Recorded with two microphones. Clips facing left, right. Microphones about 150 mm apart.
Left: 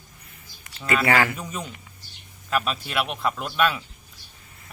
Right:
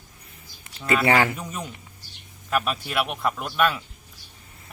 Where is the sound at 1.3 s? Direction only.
5° right (ahead or behind).